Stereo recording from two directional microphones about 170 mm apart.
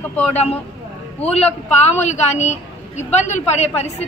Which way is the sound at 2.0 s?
45° left (ahead or behind).